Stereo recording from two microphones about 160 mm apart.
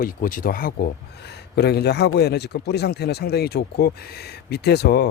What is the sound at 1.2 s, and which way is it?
A man's voice, 90° left.